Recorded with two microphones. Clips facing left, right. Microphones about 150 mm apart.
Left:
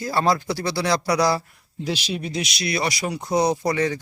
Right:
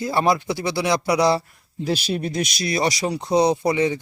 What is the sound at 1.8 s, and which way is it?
Speech, 50° right (ahead or behind).